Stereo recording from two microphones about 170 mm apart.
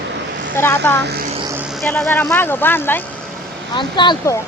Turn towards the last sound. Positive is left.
turn(degrees=20)  # may be behind; listen again after turning